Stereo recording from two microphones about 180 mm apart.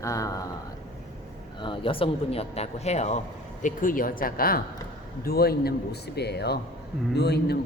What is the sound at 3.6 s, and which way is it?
A man's voice, 50° left (ahead or behind).